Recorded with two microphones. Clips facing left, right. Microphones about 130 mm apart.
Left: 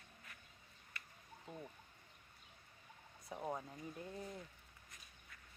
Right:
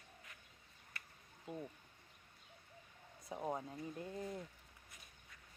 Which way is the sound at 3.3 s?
10° right (ahead or behind).